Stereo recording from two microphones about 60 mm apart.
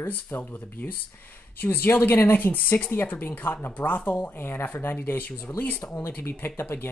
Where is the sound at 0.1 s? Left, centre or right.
Left.